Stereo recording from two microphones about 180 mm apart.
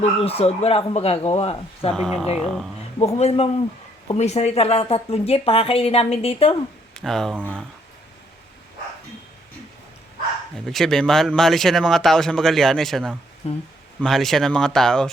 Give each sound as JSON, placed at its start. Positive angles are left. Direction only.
{"t": 0.0, "sound": "a woman's voice", "side_deg": 35}
{"t": 1.9, "sound": "speech", "side_deg": 0}
{"t": 3.0, "sound": "a woman's voice", "side_deg": 35}
{"t": 6.9, "sound": "speech", "side_deg": 0}
{"t": 10.7, "sound": "speech", "side_deg": 0}
{"t": 13.4, "sound": "a woman's voice", "side_deg": 35}
{"t": 14.0, "sound": "speech", "side_deg": 0}